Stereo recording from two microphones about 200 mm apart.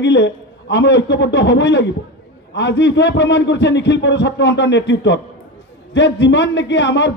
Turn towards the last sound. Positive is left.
turn(degrees=60)  # may be behind; listen again after turning